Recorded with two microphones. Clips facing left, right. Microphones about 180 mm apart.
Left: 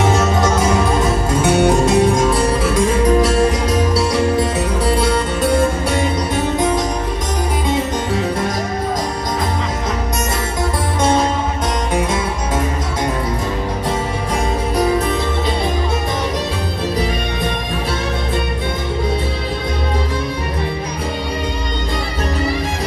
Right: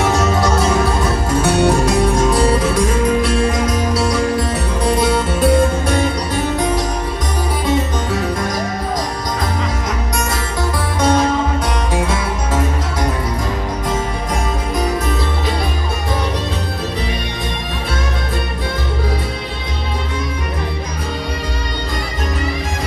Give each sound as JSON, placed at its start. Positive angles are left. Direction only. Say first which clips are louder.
{"t": 1.4, "sound": "music", "louder": "left 1 dB", "side_deg": 20}